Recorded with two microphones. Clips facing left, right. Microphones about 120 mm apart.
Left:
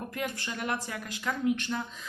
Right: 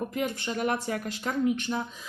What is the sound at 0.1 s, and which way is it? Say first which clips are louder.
Speech: right 5 dB; 25° right (ahead or behind).